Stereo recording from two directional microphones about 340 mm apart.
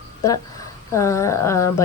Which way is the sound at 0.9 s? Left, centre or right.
Centre.